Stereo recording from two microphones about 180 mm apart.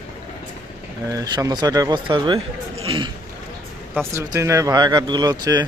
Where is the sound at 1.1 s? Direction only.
20° right (ahead or behind).